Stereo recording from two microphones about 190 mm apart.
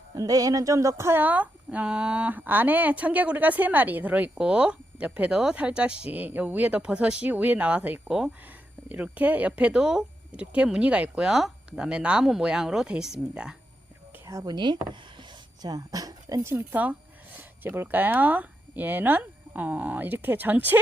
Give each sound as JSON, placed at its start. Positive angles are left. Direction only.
{"t": 0.2, "sound": "speech", "side_deg": -20}
{"t": 14.3, "sound": "speech", "side_deg": -20}